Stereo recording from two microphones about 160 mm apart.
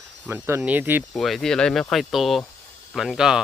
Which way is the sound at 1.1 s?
Centre (ahead or behind).